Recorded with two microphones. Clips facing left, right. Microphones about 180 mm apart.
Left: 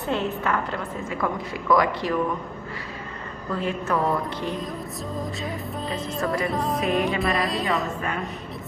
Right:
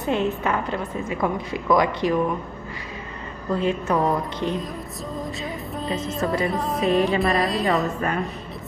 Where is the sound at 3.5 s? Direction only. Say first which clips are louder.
Right 4 dB; 20° right (ahead or behind).